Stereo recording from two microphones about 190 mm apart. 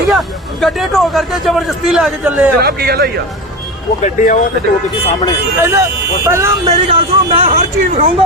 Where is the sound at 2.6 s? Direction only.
55° right (ahead or behind).